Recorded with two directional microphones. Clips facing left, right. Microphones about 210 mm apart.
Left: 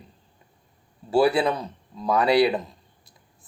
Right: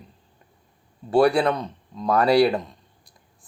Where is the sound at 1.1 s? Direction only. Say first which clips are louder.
Right 2 dB; centre (ahead or behind).